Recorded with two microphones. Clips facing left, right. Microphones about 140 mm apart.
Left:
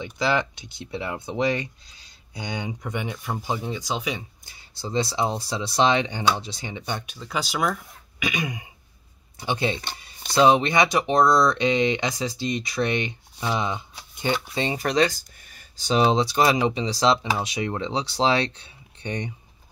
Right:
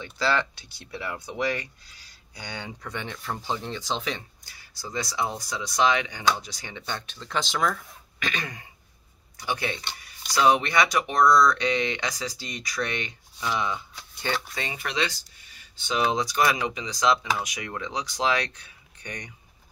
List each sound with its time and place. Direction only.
0.0 s speech: 15° left (ahead or behind)
4.6 s speech: 25° left (ahead or behind)
9.4 s speech: 25° left (ahead or behind)
14.5 s speech: 30° left (ahead or behind)